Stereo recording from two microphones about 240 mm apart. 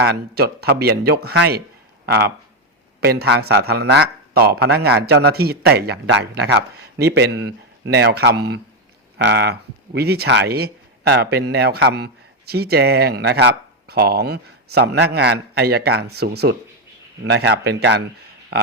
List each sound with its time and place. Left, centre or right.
0.0 s a man's voice: right